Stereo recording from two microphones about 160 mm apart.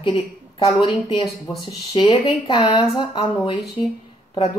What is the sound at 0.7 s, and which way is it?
A woman's voice, 30° left (ahead or behind).